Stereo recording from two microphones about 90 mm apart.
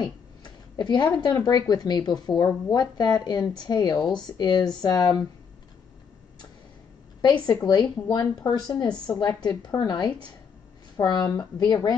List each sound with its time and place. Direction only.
0.0 s speech: 50° left (ahead or behind)
7.2 s speech: 50° left (ahead or behind)